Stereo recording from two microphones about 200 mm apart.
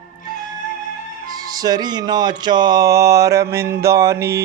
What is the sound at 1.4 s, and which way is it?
Music, 20° right (ahead or behind).